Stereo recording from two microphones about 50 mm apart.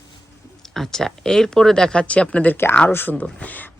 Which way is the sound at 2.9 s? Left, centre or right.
Left.